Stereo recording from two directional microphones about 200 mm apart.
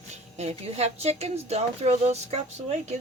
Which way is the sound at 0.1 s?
35° right (ahead or behind).